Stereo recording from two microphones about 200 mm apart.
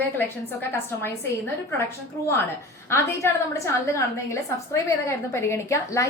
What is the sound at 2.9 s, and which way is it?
A woman's voice, 10° left (ahead or behind).